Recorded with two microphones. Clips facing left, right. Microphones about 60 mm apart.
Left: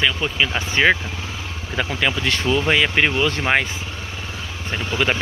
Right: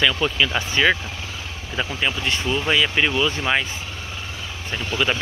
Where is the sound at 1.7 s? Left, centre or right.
Left.